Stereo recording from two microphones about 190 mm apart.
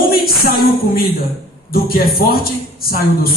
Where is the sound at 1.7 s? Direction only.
50° left (ahead or behind).